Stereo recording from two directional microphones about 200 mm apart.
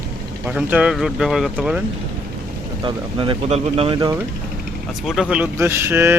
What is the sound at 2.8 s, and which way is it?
Speech, 25° right (ahead or behind).